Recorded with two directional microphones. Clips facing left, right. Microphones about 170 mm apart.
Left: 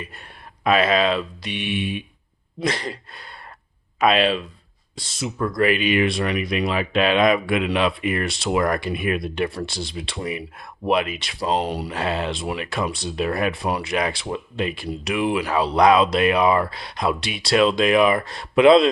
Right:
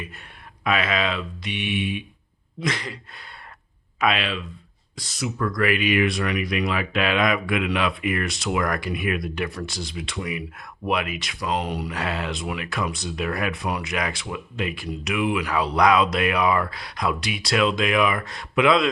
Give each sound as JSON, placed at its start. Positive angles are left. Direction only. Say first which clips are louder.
{"t": 0.6, "sound": "speech", "louder": "left 5 dB", "side_deg": 35}
{"t": 4.0, "sound": "speech", "louder": "left 6 dB", "side_deg": 35}